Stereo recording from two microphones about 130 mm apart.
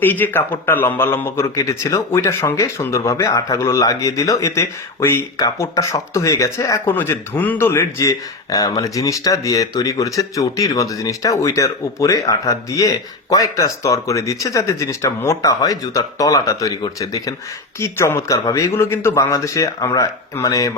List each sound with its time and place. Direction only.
0.0 s a man's voice: 15° left (ahead or behind)